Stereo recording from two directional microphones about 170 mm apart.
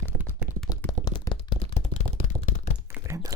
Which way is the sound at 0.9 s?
20° left (ahead or behind).